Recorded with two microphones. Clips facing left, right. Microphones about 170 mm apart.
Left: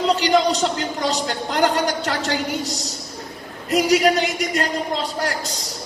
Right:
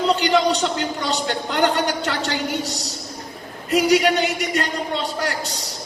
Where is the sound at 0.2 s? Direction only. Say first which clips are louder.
Left 1 dB; 35° left (ahead or behind).